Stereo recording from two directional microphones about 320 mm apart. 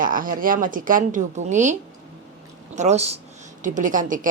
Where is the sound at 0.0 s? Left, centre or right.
Right.